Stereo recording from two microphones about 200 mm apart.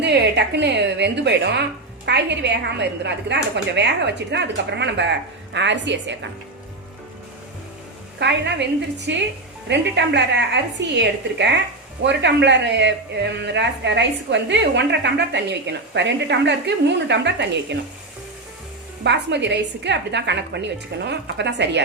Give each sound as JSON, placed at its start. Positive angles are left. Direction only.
{"t": 0.0, "sound": "speech", "side_deg": -60}
{"t": 8.2, "sound": "speech", "side_deg": -60}
{"t": 19.0, "sound": "speech", "side_deg": -60}